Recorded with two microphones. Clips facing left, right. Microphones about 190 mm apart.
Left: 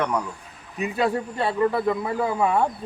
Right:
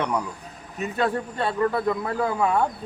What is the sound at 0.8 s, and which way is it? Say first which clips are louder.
Speech: left 1 dB; 5° left (ahead or behind).